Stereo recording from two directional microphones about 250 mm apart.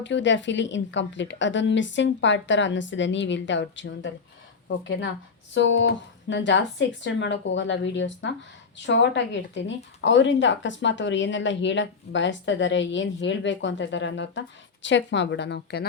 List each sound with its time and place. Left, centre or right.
0.0 s a woman's voice: left